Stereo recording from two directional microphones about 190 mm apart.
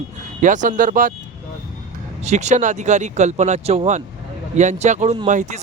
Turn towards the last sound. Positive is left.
turn(degrees=-40)  # may be behind; listen again after turning